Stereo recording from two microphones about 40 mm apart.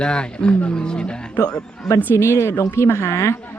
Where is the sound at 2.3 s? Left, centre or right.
Left.